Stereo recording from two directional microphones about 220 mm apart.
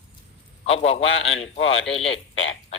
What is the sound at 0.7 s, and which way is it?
A man's voice, 25° left (ahead or behind).